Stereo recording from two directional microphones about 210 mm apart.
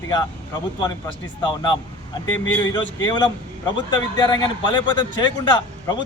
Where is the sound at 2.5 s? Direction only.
10° left (ahead or behind).